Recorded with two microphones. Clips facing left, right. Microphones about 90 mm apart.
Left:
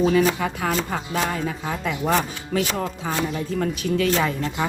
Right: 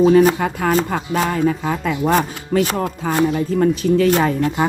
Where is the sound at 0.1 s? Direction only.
45° right (ahead or behind).